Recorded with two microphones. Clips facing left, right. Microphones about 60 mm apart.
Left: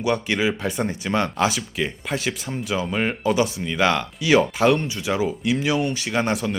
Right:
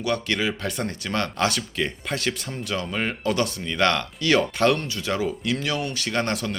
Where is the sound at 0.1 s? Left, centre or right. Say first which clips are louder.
Left 3 dB; centre.